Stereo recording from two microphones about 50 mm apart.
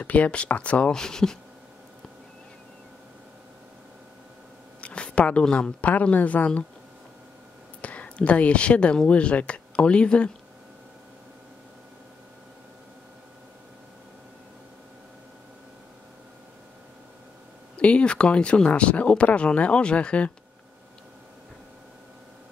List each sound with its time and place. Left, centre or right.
0.0 s speech: left
0.9 s speech: centre
4.7 s a sound: left
5.4 s speech: centre
5.8 s speech: left
7.8 s speech: left
17.7 s speech: left